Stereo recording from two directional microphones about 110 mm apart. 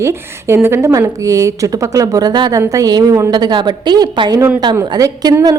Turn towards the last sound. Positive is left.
turn(degrees=-35)  # may be behind; listen again after turning